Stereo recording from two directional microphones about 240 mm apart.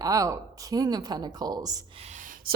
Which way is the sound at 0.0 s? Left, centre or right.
Centre.